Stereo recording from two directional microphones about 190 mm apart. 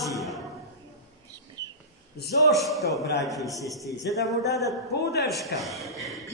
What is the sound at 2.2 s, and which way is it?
Speech, 60° left (ahead or behind).